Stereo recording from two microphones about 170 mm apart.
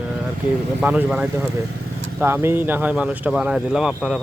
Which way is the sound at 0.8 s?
10° right (ahead or behind).